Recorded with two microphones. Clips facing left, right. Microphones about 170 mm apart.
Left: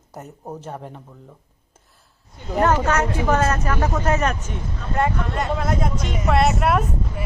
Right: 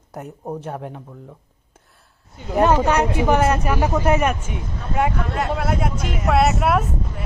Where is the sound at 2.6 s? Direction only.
15° right (ahead or behind).